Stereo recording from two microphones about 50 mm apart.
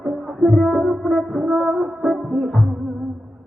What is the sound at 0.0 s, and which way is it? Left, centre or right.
Music, centre.